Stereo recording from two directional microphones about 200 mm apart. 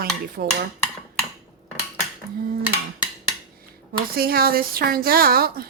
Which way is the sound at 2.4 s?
50° right (ahead or behind).